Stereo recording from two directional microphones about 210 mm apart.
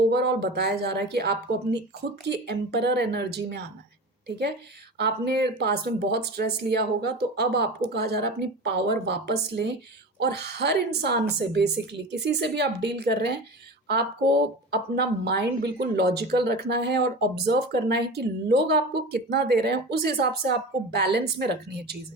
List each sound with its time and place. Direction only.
0.1 s speech: 50° right (ahead or behind)
4.9 s speech: 50° right (ahead or behind)